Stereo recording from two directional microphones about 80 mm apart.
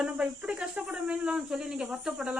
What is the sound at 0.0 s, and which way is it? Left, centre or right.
Speech, centre.